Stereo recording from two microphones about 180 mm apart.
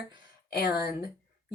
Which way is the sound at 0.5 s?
60° left (ahead or behind).